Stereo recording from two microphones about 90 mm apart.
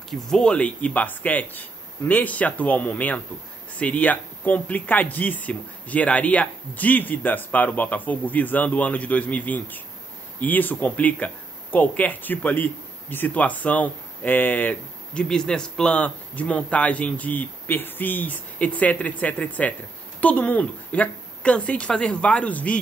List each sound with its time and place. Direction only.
0.1 s speech: 10° left (ahead or behind)